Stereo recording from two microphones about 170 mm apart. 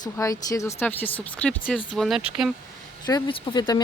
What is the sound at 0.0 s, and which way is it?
Speech, 20° left (ahead or behind).